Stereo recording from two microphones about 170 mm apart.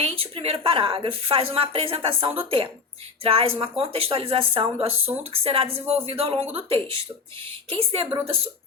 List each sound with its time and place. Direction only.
0.0 s speech: 35° right (ahead or behind)